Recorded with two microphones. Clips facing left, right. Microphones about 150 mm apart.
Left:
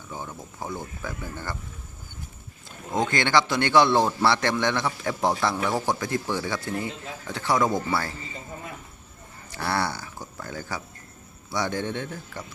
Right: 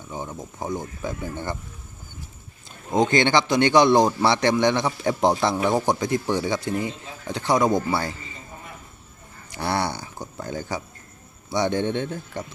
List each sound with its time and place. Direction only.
0.1 s a man's voice: 15° right (ahead or behind)
2.9 s a man's voice: 20° right (ahead or behind)
9.5 s a man's voice: 20° right (ahead or behind)